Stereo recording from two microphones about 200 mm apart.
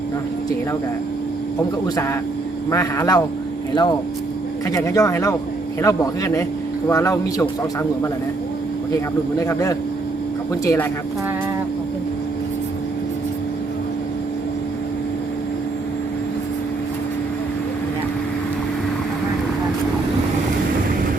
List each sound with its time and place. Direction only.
2.6 s speech: 15° left (ahead or behind)
9.4 s speech: 15° left (ahead or behind)